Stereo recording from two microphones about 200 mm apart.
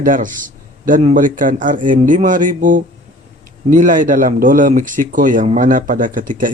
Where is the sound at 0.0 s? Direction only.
40° right (ahead or behind).